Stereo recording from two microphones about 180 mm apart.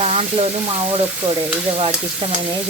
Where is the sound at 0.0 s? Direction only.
35° right (ahead or behind).